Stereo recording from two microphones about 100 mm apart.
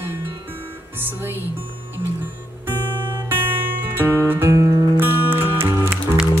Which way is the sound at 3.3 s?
20° right (ahead or behind).